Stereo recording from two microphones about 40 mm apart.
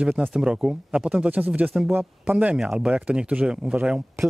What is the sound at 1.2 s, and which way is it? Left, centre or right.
Speech, right.